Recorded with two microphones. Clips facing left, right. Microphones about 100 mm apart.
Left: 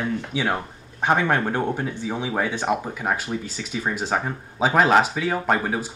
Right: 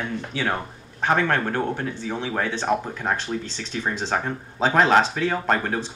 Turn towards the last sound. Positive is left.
turn(degrees=10)  # may be behind; listen again after turning